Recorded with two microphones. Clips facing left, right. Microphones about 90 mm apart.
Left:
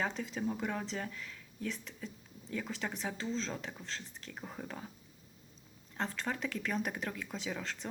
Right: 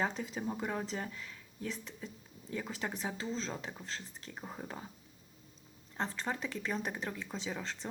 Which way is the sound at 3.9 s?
35° right (ahead or behind).